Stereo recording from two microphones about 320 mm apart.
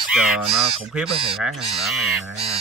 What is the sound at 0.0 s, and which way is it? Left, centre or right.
Speech, centre.